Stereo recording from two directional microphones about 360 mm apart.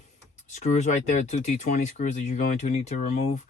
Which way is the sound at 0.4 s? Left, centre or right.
Centre.